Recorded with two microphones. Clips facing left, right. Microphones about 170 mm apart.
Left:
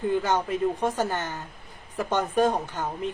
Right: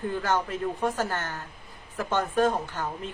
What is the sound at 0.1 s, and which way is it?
A woman's voice, 15° left (ahead or behind).